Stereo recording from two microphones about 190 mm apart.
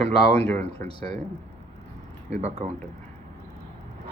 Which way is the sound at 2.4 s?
35° right (ahead or behind).